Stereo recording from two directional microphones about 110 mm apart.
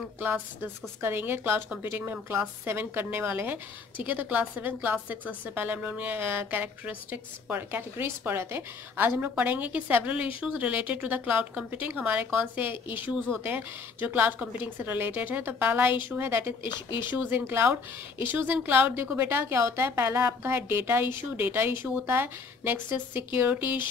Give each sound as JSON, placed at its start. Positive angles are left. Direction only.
{"t": 0.2, "sound": "a woman's voice", "side_deg": -20}